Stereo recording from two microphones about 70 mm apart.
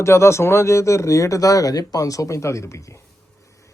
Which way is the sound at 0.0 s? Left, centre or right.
Left.